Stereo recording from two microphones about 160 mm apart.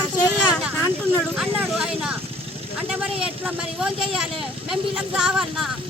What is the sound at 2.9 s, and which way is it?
Vehicle, 5° right (ahead or behind).